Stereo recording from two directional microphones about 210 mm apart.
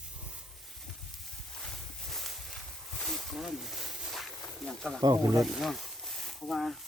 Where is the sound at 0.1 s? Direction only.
5° right (ahead or behind).